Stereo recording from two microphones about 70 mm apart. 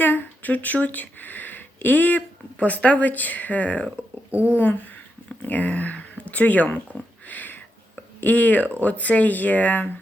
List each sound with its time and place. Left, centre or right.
0.0 s speech: left
4.3 s speech: right
4.5 s speech: left
7.3 s a sound: left
8.2 s speech: left